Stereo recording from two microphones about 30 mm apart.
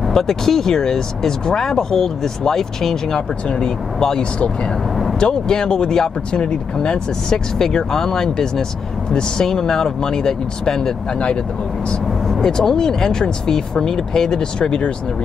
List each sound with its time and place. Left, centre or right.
0.1 s speech: centre
3.4 s speech: left
5.2 s speech: left
7.5 s speech: centre
12.4 s speech: left
14.4 s speech: left